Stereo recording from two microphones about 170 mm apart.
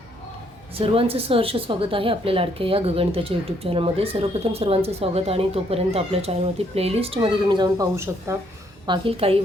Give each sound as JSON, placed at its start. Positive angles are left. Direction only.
{"t": 0.8, "sound": "a woman's voice", "side_deg": -35}
{"t": 8.9, "sound": "a woman's voice", "side_deg": -35}